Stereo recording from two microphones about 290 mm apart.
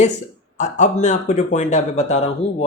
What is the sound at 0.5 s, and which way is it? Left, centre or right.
Speech, left.